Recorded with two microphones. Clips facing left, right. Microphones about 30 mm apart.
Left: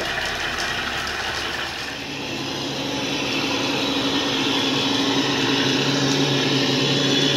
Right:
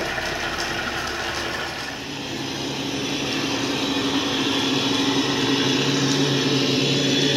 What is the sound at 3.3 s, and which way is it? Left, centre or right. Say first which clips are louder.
Vehicle: left 2 dB; centre.